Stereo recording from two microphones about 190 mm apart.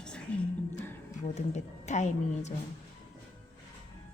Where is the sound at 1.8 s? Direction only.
40° left (ahead or behind).